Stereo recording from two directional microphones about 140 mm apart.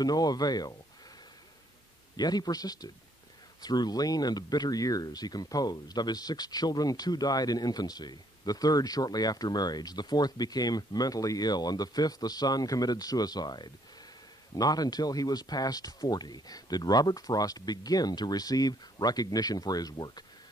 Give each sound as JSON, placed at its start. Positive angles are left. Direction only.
{"t": 0.0, "sound": "speech", "side_deg": 25}
{"t": 2.1, "sound": "speech", "side_deg": 30}